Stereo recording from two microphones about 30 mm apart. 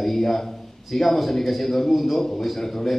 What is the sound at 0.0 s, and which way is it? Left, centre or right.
A man's voice, centre.